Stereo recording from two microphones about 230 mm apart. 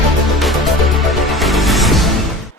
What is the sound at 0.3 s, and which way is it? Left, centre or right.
Music, centre.